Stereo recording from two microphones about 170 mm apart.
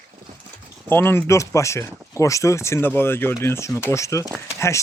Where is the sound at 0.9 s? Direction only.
15° left (ahead or behind).